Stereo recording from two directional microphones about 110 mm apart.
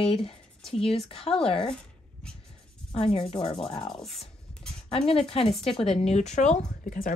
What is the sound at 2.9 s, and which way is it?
Speech, 60° left (ahead or behind).